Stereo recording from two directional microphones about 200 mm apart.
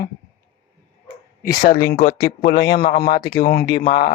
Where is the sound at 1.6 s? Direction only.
45° left (ahead or behind).